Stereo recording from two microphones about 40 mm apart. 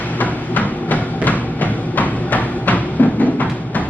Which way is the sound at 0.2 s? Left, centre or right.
Left.